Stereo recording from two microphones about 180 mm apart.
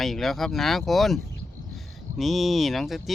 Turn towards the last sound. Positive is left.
turn(degrees=0)  # may be behind; listen again after turning